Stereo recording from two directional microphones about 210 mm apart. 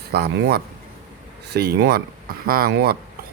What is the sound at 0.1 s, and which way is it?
Speech, 50° right (ahead or behind).